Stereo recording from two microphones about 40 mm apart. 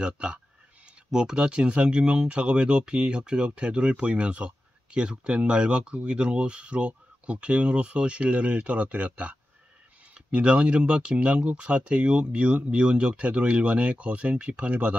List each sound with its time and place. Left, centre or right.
0.0 s speech: right
10.1 s speech: right